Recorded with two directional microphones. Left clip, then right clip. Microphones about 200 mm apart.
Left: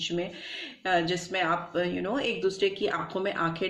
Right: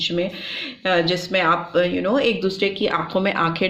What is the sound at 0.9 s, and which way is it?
Speech, 35° right (ahead or behind).